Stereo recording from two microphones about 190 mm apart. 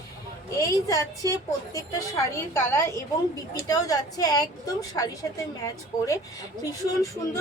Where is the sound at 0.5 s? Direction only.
20° left (ahead or behind).